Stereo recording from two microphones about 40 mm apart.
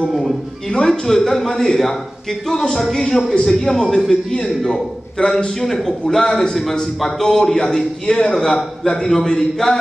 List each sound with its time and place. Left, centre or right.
0.2 s a man's voice: centre